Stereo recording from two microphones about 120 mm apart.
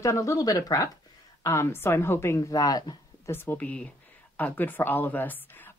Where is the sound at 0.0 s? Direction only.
25° left (ahead or behind).